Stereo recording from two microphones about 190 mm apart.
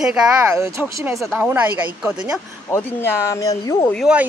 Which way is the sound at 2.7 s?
10° left (ahead or behind).